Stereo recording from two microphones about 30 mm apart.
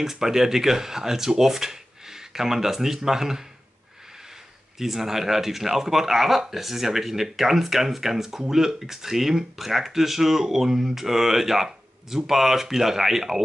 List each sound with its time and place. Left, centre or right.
0.0 s speech: centre
4.7 s speech: centre